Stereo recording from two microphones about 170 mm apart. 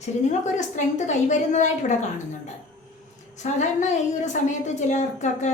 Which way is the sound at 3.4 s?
45° left (ahead or behind).